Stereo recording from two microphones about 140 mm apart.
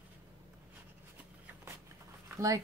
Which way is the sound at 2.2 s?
20° right (ahead or behind).